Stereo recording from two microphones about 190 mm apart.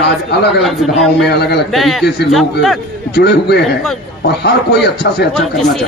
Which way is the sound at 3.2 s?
60° left (ahead or behind).